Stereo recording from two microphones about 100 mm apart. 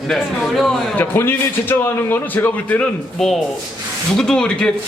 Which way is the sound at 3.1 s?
5° left (ahead or behind).